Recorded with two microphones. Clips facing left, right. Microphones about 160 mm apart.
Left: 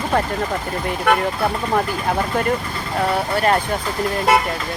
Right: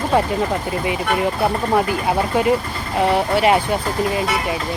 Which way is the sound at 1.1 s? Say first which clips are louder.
Left 5 dB; 55° left (ahead or behind).